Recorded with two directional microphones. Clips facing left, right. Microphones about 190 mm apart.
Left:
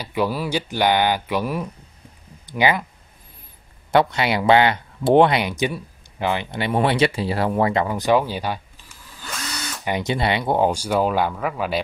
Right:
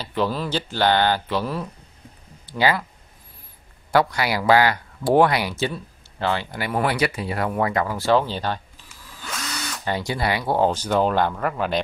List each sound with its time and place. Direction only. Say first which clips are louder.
0.0 s speech: left 1 dB; 10° left (ahead or behind)
3.9 s speech: left 2 dB; 25° left (ahead or behind)
9.8 s speech: left 2 dB; 20° left (ahead or behind); by 11.8 s 5° left (ahead or behind)